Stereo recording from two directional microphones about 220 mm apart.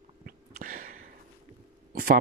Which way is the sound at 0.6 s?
40° right (ahead or behind).